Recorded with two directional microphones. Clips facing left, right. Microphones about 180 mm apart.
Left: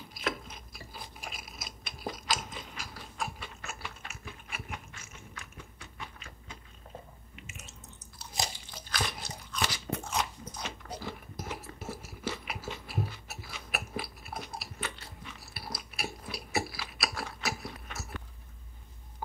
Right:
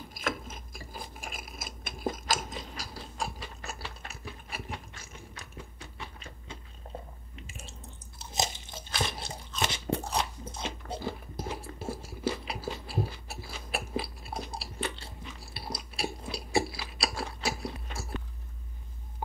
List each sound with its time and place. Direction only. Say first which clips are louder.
0.1 s a sound: even; 45° right (ahead or behind); by 6.6 s 30° right (ahead or behind)
7.3 s drip: right 3 dB; 30° right (ahead or behind)
8.2 s crunch: right 4 dB; 20° right (ahead or behind)